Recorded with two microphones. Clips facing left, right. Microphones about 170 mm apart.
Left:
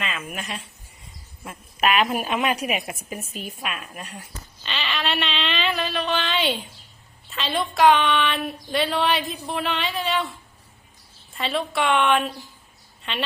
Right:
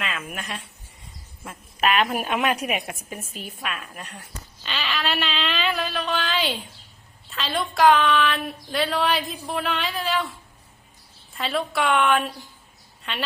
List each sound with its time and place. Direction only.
0.0 s a woman's voice: centre (ahead or behind)
4.6 s speech: centre (ahead or behind)
11.3 s speech: centre (ahead or behind)